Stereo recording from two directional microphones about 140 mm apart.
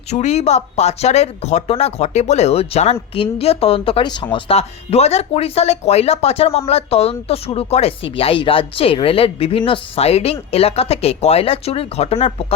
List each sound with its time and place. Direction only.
0.1 s speech: 50° left (ahead or behind)